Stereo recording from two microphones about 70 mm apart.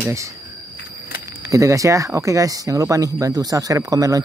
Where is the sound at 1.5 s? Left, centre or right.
Right.